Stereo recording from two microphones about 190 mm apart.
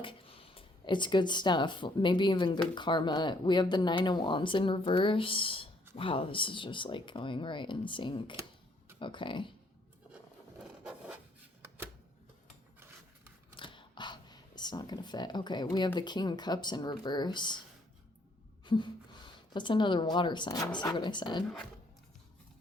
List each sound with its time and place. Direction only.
0.0 s speech: 30° left (ahead or behind)
10.6 s rub: 5° right (ahead or behind)
13.6 s camera: 25° left (ahead or behind)
16.0 s speech: 20° left (ahead or behind)
18.6 s a woman's voice: 25° left (ahead or behind)